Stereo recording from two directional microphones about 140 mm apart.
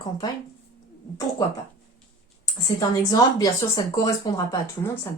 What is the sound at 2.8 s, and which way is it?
Speech, 25° left (ahead or behind).